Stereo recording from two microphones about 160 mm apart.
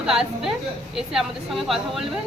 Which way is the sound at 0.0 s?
5° right (ahead or behind).